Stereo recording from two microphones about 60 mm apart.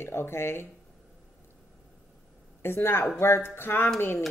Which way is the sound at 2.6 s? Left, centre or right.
Left.